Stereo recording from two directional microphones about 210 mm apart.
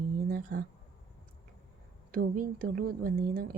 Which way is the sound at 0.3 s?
45° right (ahead or behind).